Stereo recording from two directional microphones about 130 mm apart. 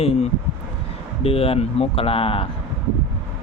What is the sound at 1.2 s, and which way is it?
Speech, 50° left (ahead or behind).